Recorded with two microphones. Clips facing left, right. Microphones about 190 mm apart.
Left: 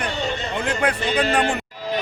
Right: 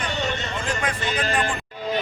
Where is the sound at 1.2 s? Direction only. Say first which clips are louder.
Left 5 dB; 65° left (ahead or behind).